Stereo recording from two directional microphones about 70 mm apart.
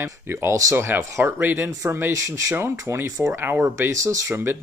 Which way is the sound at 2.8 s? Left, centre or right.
Right.